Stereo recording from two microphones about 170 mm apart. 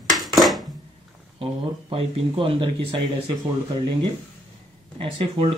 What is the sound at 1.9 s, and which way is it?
Speech, 35° right (ahead or behind).